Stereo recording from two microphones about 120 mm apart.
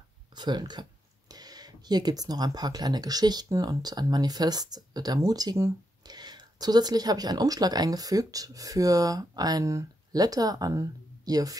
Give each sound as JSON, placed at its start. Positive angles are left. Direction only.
{"t": 0.3, "sound": "speech", "side_deg": -35}